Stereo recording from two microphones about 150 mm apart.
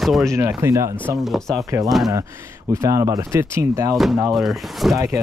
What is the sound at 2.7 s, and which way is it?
Speech, 20° right (ahead or behind).